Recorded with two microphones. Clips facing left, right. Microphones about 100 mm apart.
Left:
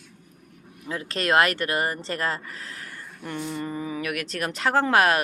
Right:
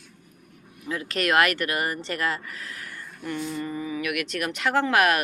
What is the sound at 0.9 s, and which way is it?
Speech, 30° left (ahead or behind).